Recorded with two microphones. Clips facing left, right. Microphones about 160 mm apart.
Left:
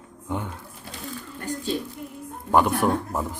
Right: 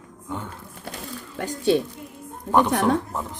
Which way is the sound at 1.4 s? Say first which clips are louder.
Right 8 dB; 80° right.